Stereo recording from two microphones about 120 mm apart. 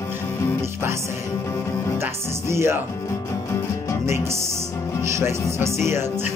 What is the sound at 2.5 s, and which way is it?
Music, 20° right (ahead or behind).